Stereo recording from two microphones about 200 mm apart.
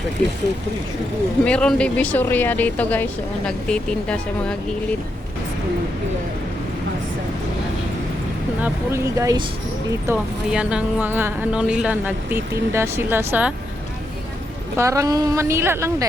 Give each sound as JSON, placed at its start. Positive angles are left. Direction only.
{"t": 1.5, "sound": "speech", "side_deg": 5}
{"t": 8.6, "sound": "speech", "side_deg": -15}
{"t": 10.1, "sound": "speech", "side_deg": -5}
{"t": 14.8, "sound": "speech", "side_deg": -15}